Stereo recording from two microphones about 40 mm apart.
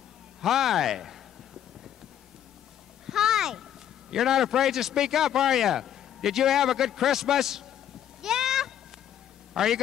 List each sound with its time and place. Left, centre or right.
0.4 s a man's voice: centre
3.1 s a sound: centre
4.1 s a man's voice: centre
8.2 s goat: centre
9.6 s a man's voice: centre